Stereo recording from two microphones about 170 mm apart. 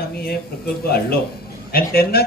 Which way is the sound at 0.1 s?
65° left (ahead or behind).